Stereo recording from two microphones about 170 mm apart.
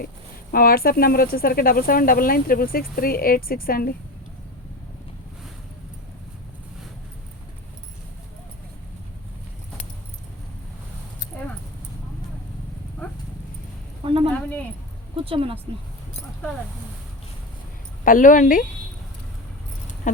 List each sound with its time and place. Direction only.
0.5 s speech: 60° left (ahead or behind)
14.0 s a sound: 30° right (ahead or behind)
15.1 s speech: 30° right (ahead or behind)
18.0 s a woman's voice: 50° left (ahead or behind)